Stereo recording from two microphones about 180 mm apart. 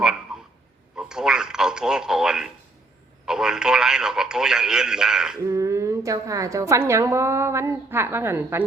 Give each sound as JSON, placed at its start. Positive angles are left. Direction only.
{"t": 0.3, "sound": "frog", "side_deg": -5}
{"t": 0.9, "sound": "a sound", "side_deg": -5}
{"t": 3.2, "sound": "speech", "side_deg": -5}
{"t": 5.4, "sound": "a woman's voice", "side_deg": -15}